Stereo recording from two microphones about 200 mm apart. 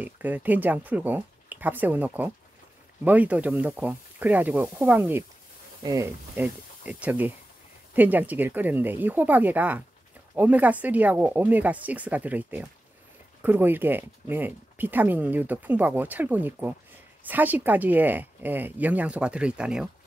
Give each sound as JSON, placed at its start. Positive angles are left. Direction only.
{"t": 0.0, "sound": "speech", "side_deg": -10}